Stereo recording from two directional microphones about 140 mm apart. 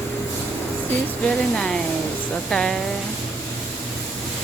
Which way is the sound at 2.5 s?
5° left (ahead or behind).